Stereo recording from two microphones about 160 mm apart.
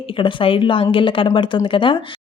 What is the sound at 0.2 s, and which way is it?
Speech, 30° left (ahead or behind).